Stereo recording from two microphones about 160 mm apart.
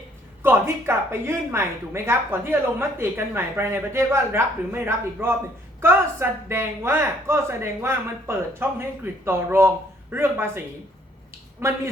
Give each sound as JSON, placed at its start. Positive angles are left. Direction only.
{"t": 0.4, "sound": "a woman's voice", "side_deg": -15}
{"t": 11.6, "sound": "a woman's voice", "side_deg": -15}